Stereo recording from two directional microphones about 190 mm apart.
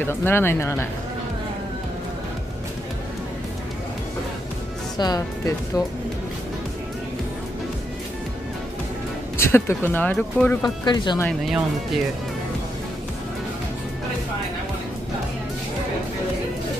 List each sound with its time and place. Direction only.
0.0 s speech: 10° left (ahead or behind)
4.9 s speech: 20° left (ahead or behind)
9.4 s speech: 15° left (ahead or behind)
10.6 s speech: 20° left (ahead or behind)
11.2 s speech: centre (ahead or behind)